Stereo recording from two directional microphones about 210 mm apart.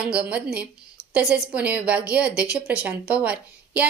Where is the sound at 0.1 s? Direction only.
5° right (ahead or behind).